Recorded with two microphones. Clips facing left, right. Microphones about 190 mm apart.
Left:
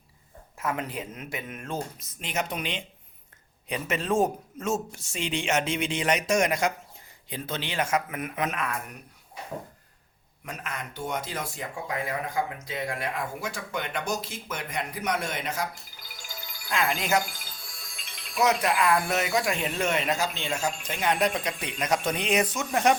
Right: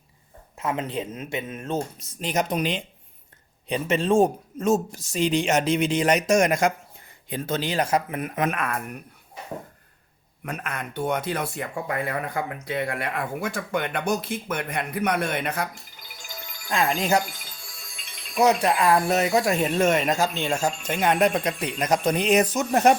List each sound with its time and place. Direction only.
0.6 s speech: 25° right (ahead or behind)
2.2 s speech: 40° right (ahead or behind)
3.7 s speech: 30° right (ahead or behind)
8.4 s speech: 55° right (ahead or behind)
10.4 s speech: 60° right (ahead or behind)
16.6 s speech: 35° right (ahead or behind)
18.3 s speech: 30° right (ahead or behind)